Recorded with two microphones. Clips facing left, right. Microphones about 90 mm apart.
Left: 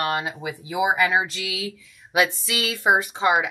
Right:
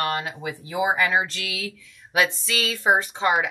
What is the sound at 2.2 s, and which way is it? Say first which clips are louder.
Speech: even; 5° left (ahead or behind).